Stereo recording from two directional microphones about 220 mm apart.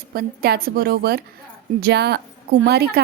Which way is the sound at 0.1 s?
45° right (ahead or behind).